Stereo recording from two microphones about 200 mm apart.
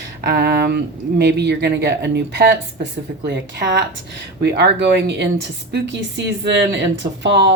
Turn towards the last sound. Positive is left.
turn(degrees=-60)  # may be behind; listen again after turning